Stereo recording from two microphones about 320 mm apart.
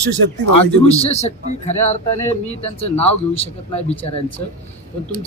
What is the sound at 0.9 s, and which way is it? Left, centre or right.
Speech, centre.